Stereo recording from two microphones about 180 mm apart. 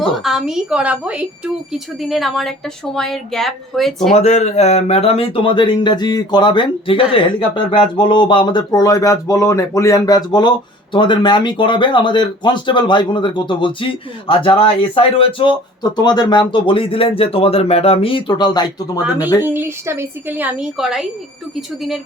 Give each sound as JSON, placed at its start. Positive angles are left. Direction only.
{"t": 0.1, "sound": "speech", "side_deg": 0}
{"t": 4.1, "sound": "speech", "side_deg": 40}
{"t": 19.5, "sound": "speech", "side_deg": -15}